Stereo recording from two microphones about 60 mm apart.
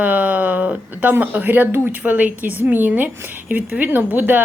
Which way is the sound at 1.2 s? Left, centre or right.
Right.